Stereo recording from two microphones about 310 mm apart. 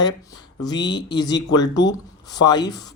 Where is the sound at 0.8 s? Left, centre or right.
Left.